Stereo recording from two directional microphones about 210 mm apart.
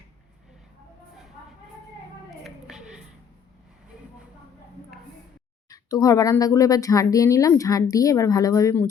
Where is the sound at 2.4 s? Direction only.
Centre (ahead or behind).